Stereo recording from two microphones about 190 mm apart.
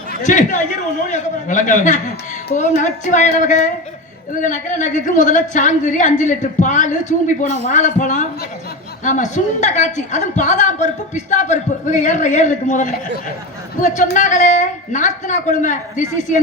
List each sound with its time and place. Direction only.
0.2 s a woman's voice: 40° left (ahead or behind)